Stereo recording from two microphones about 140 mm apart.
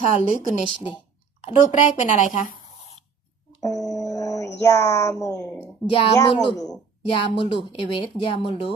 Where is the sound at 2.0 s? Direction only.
65° left (ahead or behind).